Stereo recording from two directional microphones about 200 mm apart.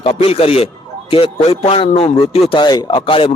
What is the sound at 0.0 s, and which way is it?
Speech, 30° left (ahead or behind).